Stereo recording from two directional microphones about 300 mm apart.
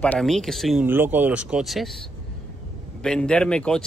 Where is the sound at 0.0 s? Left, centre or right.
Centre.